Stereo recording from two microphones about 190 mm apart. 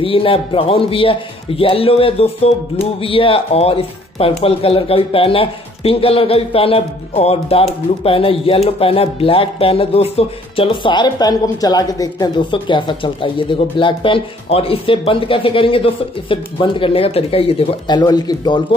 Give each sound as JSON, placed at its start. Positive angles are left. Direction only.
{"t": 0.0, "sound": "a man's voice", "side_deg": 30}